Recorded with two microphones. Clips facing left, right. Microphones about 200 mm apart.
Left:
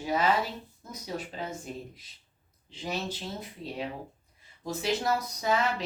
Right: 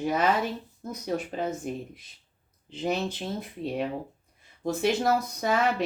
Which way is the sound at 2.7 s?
55° right (ahead or behind).